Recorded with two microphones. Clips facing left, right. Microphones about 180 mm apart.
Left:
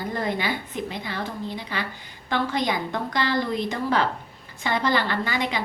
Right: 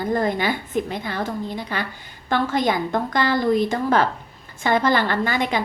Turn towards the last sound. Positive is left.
turn(degrees=-50)  # may be behind; listen again after turning